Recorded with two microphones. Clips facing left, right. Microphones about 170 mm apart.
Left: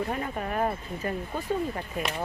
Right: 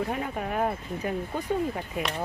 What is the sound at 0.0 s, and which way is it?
Speech, 5° right (ahead or behind).